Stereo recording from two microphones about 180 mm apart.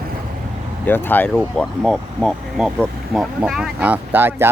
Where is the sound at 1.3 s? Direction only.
Centre (ahead or behind).